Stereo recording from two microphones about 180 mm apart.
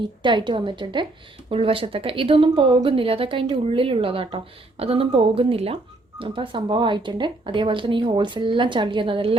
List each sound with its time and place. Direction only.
0.0 s speech: 25° right (ahead or behind)